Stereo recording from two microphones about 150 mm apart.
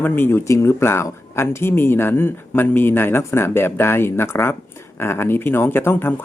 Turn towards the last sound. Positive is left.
turn(degrees=15)  # may be behind; listen again after turning